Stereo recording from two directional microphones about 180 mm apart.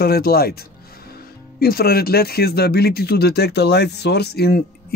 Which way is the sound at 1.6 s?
60° left (ahead or behind).